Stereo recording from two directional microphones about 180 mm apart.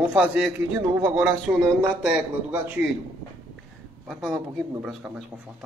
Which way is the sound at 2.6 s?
10° right (ahead or behind).